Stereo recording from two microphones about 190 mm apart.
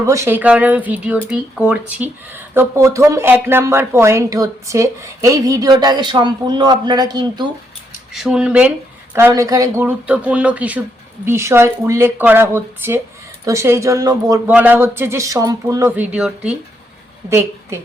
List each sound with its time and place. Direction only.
0.0 s speech: 15° right (ahead or behind)
8.1 s a woman's voice: centre (ahead or behind)